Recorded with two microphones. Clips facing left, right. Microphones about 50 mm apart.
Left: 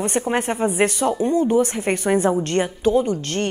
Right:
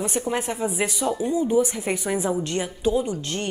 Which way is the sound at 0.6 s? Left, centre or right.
Left.